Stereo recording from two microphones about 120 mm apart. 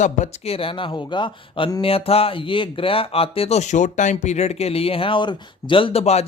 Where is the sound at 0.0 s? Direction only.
85° left.